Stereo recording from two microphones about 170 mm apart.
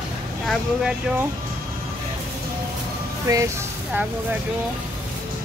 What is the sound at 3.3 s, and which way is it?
Speech, 20° right (ahead or behind).